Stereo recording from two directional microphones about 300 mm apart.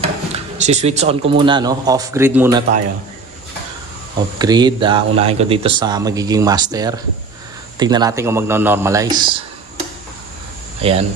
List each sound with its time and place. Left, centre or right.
0.0 s speech: right
4.4 s speech: centre
10.8 s speech: centre